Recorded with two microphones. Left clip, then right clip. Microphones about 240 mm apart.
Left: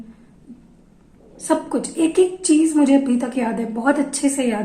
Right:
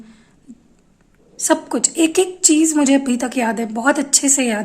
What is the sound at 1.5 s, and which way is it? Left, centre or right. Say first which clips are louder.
A woman's voice: right 3 dB; right.